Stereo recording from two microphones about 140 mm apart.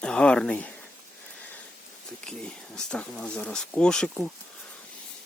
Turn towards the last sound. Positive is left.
turn(degrees=5)  # may be behind; listen again after turning